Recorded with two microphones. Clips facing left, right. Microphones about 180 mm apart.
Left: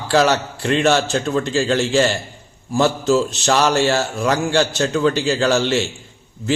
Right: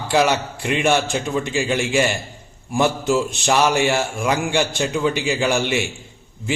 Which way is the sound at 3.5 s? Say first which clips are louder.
Left 1 dB; 10° right (ahead or behind).